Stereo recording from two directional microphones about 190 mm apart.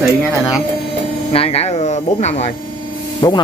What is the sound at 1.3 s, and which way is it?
Speech, 30° left (ahead or behind).